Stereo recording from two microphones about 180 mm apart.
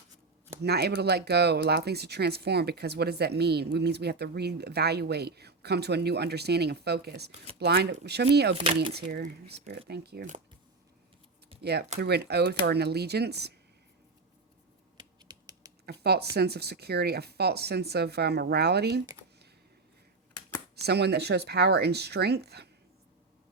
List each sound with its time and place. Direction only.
0.6 s speech: 65° right (ahead or behind)
8.5 s speech: 30° right (ahead or behind)
9.0 s speech: 65° right (ahead or behind)
11.6 s speech: 65° right (ahead or behind)
14.9 s typing: 20° right (ahead or behind)
15.9 s speech: 65° right (ahead or behind)
20.8 s speech: 65° right (ahead or behind)